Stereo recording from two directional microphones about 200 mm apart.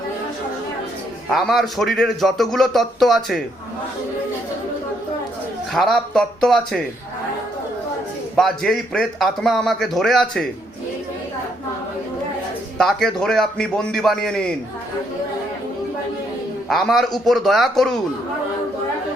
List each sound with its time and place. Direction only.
1.3 s a man's voice: centre (ahead or behind)
5.7 s a man's voice: centre (ahead or behind)
8.4 s a man's voice: centre (ahead or behind)
12.7 s a man's voice: centre (ahead or behind)
16.6 s a man's voice: centre (ahead or behind)